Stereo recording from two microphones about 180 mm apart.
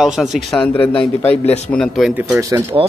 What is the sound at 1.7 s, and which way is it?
Speech, centre (ahead or behind).